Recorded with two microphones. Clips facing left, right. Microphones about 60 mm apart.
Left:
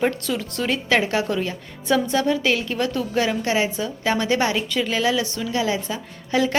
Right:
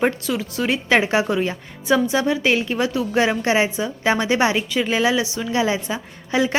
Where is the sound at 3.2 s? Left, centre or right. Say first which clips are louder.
Right 3 dB; right.